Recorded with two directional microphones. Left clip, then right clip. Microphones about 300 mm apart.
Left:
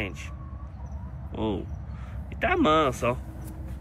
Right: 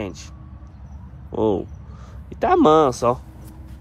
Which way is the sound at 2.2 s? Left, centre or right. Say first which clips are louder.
Right 8 dB; centre.